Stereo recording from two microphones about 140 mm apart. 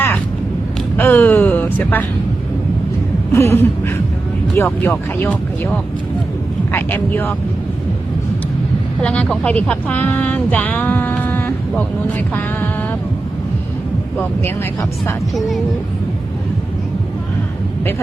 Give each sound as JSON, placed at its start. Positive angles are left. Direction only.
{"t": 0.9, "sound": "speech", "side_deg": 15}
{"t": 3.3, "sound": "a sound", "side_deg": 20}
{"t": 4.5, "sound": "speech", "side_deg": 15}
{"t": 4.9, "sound": "speech", "side_deg": 5}
{"t": 9.0, "sound": "speech", "side_deg": 5}
{"t": 15.4, "sound": "speech", "side_deg": 0}